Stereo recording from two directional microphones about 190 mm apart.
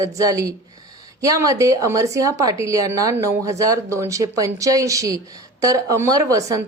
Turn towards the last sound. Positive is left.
turn(degrees=-15)  # may be behind; listen again after turning